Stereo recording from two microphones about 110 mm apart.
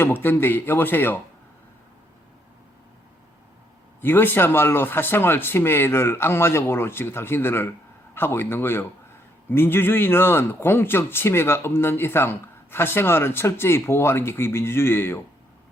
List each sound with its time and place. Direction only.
0.0 s a man's voice: 20° left (ahead or behind)
4.0 s speech: 20° left (ahead or behind)